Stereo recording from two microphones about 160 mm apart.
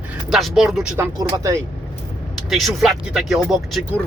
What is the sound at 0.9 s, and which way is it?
Speech, 20° right (ahead or behind).